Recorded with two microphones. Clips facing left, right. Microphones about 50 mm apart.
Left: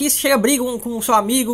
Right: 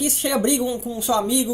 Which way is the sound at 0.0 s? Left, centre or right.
Left.